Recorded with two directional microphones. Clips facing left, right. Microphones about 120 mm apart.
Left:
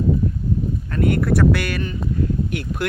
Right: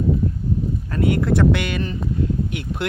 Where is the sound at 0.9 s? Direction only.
25° right (ahead or behind).